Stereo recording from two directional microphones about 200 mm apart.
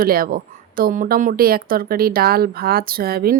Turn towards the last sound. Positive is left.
turn(degrees=-50)  # may be behind; listen again after turning